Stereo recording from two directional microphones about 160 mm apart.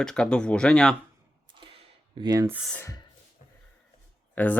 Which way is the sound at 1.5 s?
35° right (ahead or behind).